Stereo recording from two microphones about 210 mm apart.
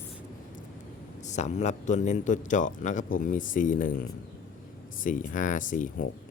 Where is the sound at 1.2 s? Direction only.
35° left (ahead or behind).